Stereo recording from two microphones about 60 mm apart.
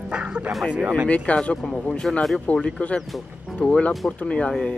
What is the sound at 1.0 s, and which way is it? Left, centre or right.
Speech, left.